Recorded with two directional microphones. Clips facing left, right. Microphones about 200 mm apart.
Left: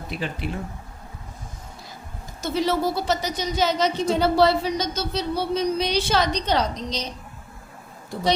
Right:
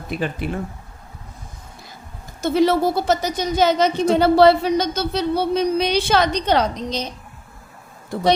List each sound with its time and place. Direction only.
0.1 s speech: 50° right (ahead or behind)
2.4 s a woman's voice: 55° right (ahead or behind)